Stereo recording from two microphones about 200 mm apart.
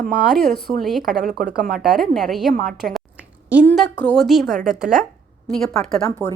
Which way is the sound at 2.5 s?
40° right (ahead or behind).